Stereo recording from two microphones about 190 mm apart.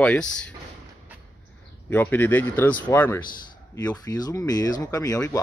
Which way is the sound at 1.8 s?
10° left (ahead or behind).